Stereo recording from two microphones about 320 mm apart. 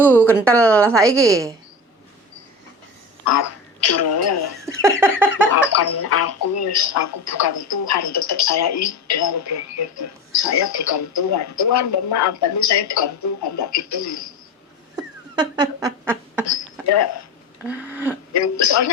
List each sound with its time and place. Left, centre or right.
0.3 s a woman's voice: centre
0.5 s a sound: centre
1.0 s a woman's voice: centre
3.2 s speech: left
4.6 s speech: centre
5.7 s speech: left
14.9 s a sound: centre
16.5 s speech: left
17.6 s a sound: centre
18.3 s speech: left